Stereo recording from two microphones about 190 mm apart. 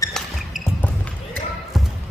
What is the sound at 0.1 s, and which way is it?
Music, 5° left (ahead or behind).